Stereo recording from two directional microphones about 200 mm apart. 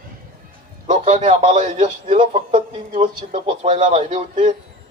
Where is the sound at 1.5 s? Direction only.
40° right (ahead or behind).